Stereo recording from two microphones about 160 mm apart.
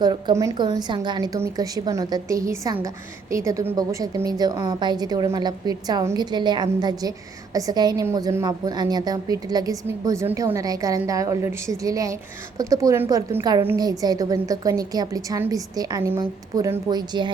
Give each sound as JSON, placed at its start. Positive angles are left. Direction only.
{"t": 0.0, "sound": "a woman's voice", "side_deg": -25}